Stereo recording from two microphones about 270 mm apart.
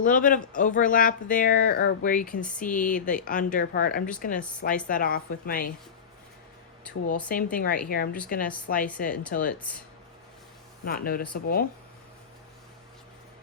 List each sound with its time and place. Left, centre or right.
0.0 s speech: left
7.3 s speech: left
9.6 s speech: centre
10.8 s speech: left